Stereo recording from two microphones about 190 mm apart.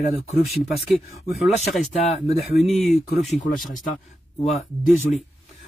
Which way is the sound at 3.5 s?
45° left (ahead or behind).